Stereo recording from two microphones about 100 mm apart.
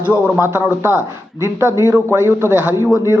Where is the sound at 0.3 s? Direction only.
25° right (ahead or behind).